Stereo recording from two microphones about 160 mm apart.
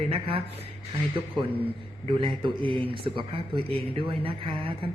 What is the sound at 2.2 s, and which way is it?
A woman's voice, 30° right (ahead or behind).